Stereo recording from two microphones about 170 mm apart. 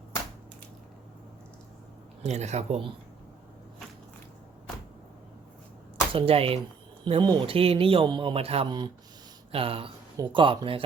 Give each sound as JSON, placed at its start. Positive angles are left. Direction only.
{"t": 2.2, "sound": "a man's voice", "side_deg": -40}
{"t": 6.1, "sound": "a man's voice", "side_deg": -35}